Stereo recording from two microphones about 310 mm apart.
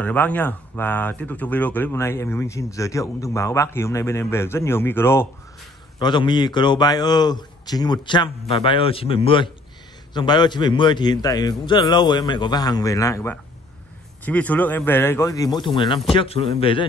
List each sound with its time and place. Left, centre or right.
0.0 s speech: centre